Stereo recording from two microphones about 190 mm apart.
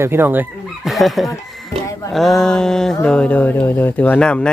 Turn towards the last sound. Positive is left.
turn(degrees=5)  # may be behind; listen again after turning